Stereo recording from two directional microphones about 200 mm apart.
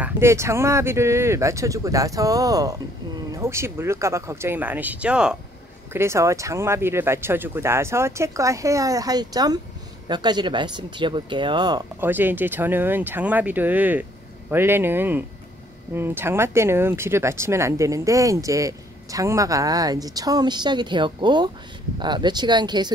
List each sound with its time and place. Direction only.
0.0 s speech: 15° right (ahead or behind)
12.0 s speech: 10° right (ahead or behind)